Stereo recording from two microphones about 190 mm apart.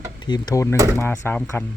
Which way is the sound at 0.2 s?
20° left (ahead or behind).